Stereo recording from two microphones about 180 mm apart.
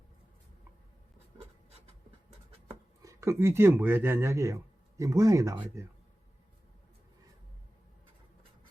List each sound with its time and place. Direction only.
3.0 s speech: 15° right (ahead or behind)